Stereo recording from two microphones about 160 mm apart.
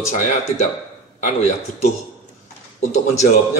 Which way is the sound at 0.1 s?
50° left (ahead or behind).